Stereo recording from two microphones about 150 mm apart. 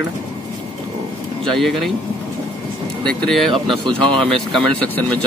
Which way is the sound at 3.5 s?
35° right (ahead or behind).